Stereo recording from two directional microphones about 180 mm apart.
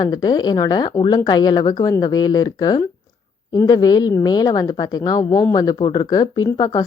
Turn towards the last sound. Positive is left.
turn(degrees=20)  # may be behind; listen again after turning